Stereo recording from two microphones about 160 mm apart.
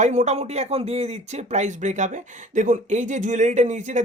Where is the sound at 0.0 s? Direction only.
45° right (ahead or behind).